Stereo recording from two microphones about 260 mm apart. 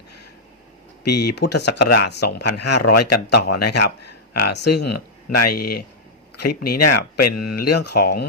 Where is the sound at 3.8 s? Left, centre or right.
Left.